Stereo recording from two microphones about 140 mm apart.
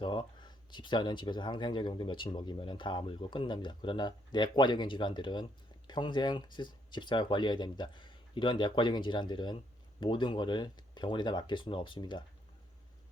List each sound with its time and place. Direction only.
0.0 s speech: 35° left (ahead or behind)